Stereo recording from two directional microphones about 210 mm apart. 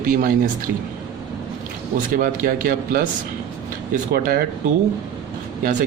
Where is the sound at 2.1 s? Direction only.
40° right (ahead or behind).